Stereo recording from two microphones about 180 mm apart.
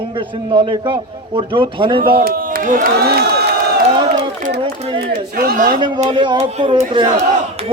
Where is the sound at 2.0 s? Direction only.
50° right (ahead or behind).